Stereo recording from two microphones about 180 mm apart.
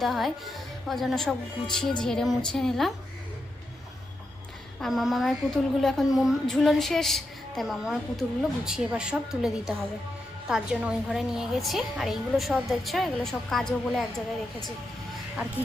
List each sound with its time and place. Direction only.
0.0 s a woman's voice: centre (ahead or behind)
4.8 s a woman's voice: centre (ahead or behind)